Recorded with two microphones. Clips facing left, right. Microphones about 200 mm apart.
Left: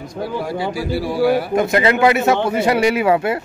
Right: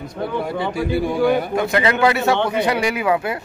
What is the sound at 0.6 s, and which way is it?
Speech, 55° right (ahead or behind).